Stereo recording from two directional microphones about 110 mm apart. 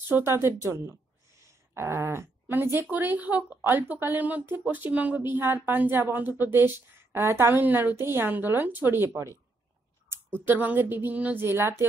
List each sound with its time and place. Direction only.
0.1 s speech: 25° right (ahead or behind)
10.1 s a sound: 25° right (ahead or behind)
10.4 s a woman's voice: 15° right (ahead or behind)